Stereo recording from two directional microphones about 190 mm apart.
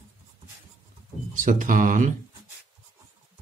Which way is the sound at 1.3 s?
40° right (ahead or behind).